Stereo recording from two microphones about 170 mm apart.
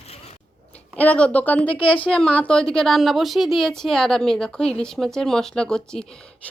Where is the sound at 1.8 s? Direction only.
30° left (ahead or behind).